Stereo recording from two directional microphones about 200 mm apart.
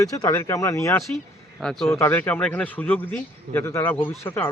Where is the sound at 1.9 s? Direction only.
10° left (ahead or behind).